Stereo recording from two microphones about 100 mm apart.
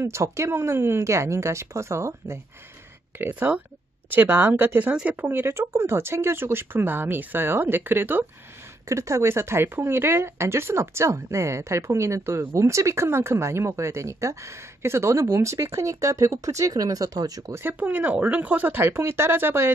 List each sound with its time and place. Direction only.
0.0 s speech: 30° right (ahead or behind)
8.8 s speech: 30° right (ahead or behind)
17.6 s speech: 15° right (ahead or behind)